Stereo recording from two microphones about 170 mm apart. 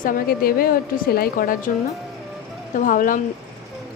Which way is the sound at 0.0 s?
60° left (ahead or behind).